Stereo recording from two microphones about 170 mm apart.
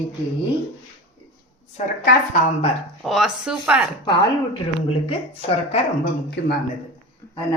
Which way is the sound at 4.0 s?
25° left (ahead or behind).